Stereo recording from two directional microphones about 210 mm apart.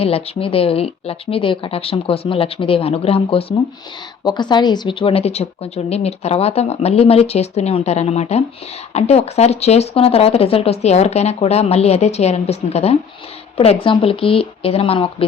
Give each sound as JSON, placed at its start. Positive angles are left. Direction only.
{"t": 0.0, "sound": "speech", "side_deg": 25}